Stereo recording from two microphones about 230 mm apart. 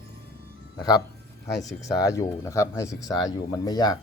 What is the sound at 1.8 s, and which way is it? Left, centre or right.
Speech, centre.